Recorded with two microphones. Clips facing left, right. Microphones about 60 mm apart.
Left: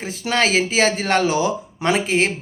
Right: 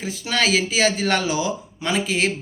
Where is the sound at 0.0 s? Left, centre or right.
Left.